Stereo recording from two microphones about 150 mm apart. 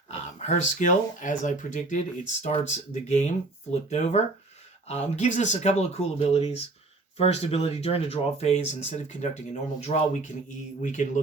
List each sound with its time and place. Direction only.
0.3 s speech: 50° left (ahead or behind)